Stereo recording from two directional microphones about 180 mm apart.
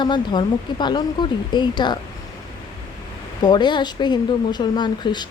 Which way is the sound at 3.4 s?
25° left (ahead or behind).